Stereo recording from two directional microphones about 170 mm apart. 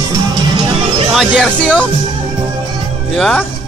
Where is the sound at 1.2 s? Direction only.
Centre (ahead or behind).